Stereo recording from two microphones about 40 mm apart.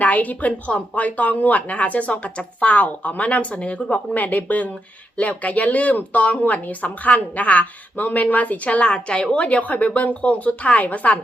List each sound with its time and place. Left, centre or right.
0.0 s speech: left
8.9 s speech: left